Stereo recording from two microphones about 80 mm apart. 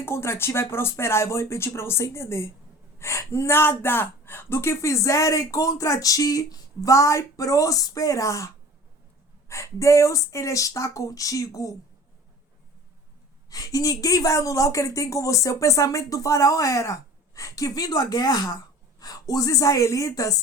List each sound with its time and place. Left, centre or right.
0.0 s a woman's voice: left
13.5 s a woman's voice: left